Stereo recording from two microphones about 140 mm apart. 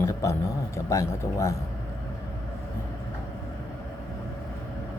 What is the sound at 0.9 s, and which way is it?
Speech, 20° left (ahead or behind).